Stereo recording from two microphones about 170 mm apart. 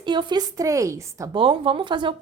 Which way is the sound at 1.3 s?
30° right (ahead or behind).